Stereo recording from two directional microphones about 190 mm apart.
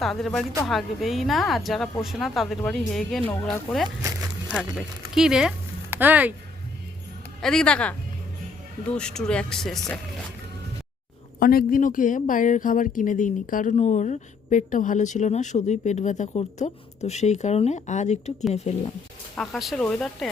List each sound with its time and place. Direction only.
0.0 s speech: centre (ahead or behind)
3.8 s a sound: 25° right (ahead or behind)
5.1 s speech: 5° right (ahead or behind)
7.4 s speech: 5° left (ahead or behind)
11.3 s speech: 50° left (ahead or behind)
19.4 s speech: centre (ahead or behind)